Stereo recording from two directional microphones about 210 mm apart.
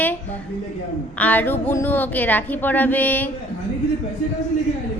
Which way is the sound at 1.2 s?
10° left (ahead or behind).